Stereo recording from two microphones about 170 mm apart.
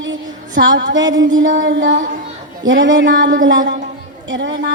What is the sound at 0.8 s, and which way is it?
A woman's voice, 90° right.